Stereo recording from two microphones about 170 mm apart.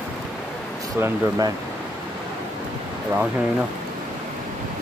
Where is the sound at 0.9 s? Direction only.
15° right (ahead or behind).